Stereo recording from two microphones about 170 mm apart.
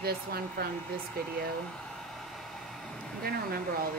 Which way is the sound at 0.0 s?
65° right (ahead or behind).